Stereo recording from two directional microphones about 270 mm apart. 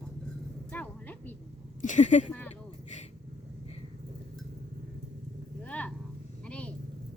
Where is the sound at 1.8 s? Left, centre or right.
Left.